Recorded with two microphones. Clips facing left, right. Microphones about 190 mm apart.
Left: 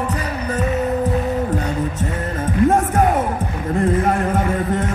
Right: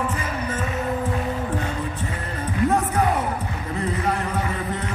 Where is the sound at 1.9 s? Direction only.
45° left (ahead or behind).